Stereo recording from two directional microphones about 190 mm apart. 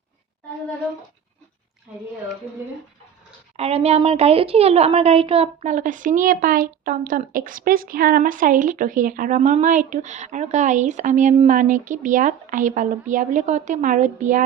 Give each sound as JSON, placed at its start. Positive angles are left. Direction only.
{"t": 3.6, "sound": "a woman's voice", "side_deg": -30}